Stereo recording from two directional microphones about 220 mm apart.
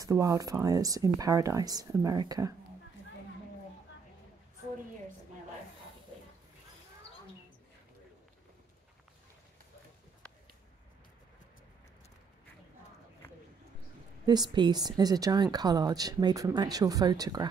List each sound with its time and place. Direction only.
0.0 s a woman's voice: 15° right (ahead or behind)
14.2 s a woman's voice: 20° right (ahead or behind)